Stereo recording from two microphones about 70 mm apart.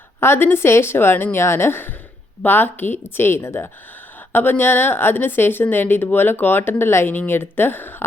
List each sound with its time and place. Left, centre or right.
0.2 s speech: left
4.3 s speech: left